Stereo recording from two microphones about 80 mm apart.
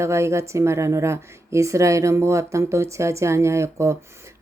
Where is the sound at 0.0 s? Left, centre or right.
Right.